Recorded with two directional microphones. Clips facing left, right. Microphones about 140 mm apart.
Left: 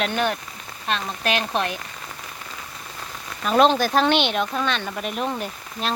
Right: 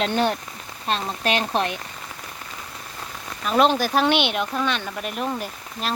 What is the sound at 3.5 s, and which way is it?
Speech, 5° right (ahead or behind).